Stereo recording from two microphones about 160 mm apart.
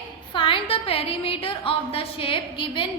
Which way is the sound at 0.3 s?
30° left (ahead or behind).